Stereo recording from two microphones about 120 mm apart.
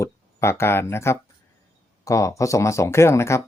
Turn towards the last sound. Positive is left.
turn(degrees=25)  # may be behind; listen again after turning